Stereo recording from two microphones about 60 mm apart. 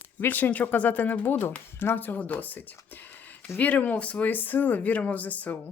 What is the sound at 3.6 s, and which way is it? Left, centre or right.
Speech, left.